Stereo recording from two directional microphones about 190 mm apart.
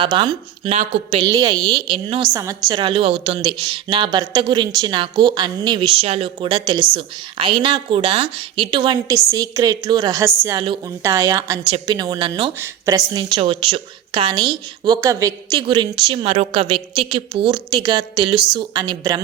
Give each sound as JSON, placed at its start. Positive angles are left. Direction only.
{"t": 0.0, "sound": "a woman's voice", "side_deg": -25}